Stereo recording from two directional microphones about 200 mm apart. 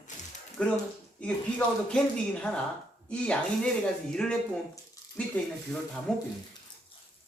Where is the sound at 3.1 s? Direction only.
5° left (ahead or behind).